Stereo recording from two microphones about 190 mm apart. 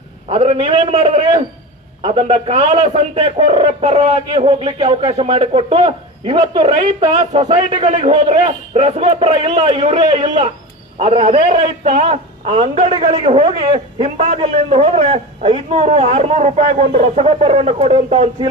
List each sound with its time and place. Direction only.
0.3 s a man's voice: 35° right (ahead or behind)
7.9 s a man's voice: 40° right (ahead or behind)